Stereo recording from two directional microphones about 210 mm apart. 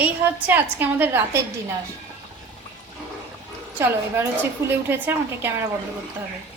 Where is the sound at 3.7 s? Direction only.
10° right (ahead or behind).